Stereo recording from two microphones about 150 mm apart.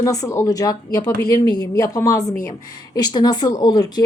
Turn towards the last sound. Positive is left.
turn(degrees=25)  # may be behind; listen again after turning